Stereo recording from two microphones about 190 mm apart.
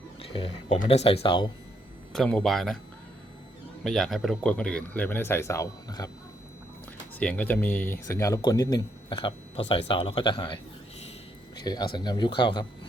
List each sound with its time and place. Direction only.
0.2 s a sound: 30° left (ahead or behind)
0.9 s speech: 30° left (ahead or behind)
2.1 s speech: 5° left (ahead or behind)
3.8 s speech: centre (ahead or behind); by 6.1 s 15° left (ahead or behind)
7.2 s speech: 5° left (ahead or behind); by 12.6 s 25° left (ahead or behind)